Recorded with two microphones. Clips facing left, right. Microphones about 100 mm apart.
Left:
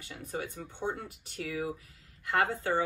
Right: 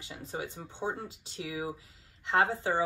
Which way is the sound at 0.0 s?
25° right (ahead or behind).